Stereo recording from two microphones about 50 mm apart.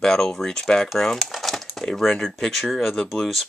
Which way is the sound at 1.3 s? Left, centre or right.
Centre.